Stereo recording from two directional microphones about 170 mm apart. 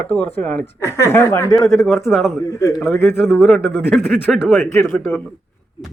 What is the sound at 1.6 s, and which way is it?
Speech, centre (ahead or behind).